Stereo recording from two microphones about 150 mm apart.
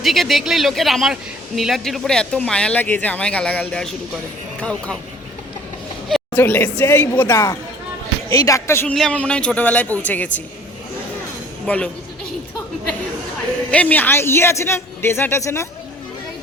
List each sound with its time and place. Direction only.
0.0 s a man's voice: centre (ahead or behind)
6.1 s a sound: centre (ahead or behind)
6.4 s speech: 10° left (ahead or behind)
11.6 s a man's voice: 10° left (ahead or behind)
13.7 s speech: 10° left (ahead or behind)